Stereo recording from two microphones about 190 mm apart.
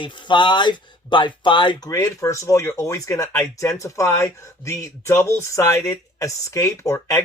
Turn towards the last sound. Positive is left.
turn(degrees=15)  # may be behind; listen again after turning